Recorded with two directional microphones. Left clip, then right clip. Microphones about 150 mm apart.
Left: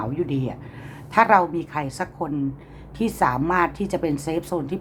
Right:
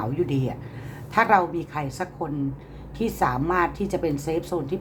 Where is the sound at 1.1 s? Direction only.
30° left (ahead or behind).